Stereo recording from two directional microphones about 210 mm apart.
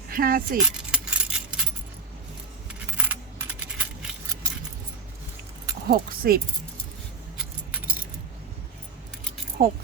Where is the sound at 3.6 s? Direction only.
5° right (ahead or behind).